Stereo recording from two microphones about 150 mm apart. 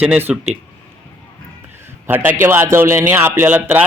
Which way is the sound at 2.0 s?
15° right (ahead or behind).